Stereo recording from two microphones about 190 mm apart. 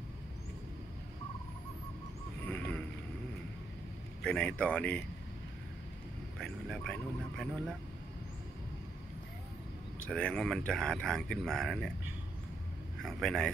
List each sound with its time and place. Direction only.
2.4 s boat: 5° left (ahead or behind)
4.2 s speech: 5° left (ahead or behind)
6.3 s speech: 5° left (ahead or behind)
10.0 s speech: 5° left (ahead or behind)
13.0 s speech: centre (ahead or behind)